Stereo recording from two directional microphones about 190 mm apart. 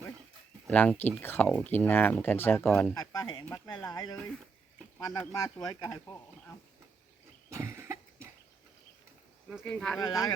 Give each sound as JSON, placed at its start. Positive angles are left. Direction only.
{"t": 0.7, "sound": "speech", "side_deg": 5}
{"t": 7.5, "sound": "cough", "side_deg": -15}
{"t": 9.5, "sound": "speech", "side_deg": 5}